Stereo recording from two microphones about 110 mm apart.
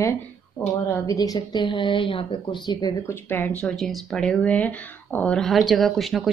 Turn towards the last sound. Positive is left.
turn(degrees=0)  # may be behind; listen again after turning